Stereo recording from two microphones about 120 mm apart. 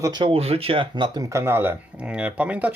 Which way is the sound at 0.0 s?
35° right (ahead or behind).